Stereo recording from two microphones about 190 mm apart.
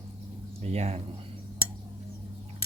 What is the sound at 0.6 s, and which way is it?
Speech, 35° right (ahead or behind).